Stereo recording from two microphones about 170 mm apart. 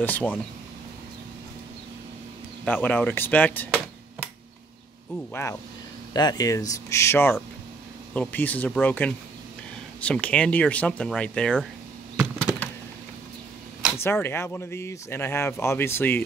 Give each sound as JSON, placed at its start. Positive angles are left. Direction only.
{"t": 0.0, "sound": "speech", "side_deg": 10}
{"t": 2.6, "sound": "speech", "side_deg": 10}
{"t": 5.3, "sound": "speech", "side_deg": 15}
{"t": 13.9, "sound": "speech", "side_deg": 15}